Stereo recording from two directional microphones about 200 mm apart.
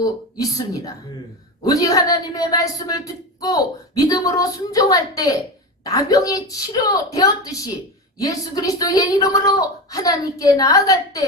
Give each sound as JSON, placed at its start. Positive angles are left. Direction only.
{"t": 0.0, "sound": "speech", "side_deg": 20}